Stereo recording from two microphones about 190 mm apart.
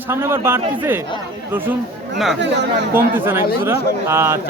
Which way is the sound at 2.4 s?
65° right (ahead or behind).